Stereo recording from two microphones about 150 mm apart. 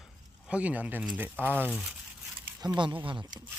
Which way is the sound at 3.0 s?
30° right (ahead or behind).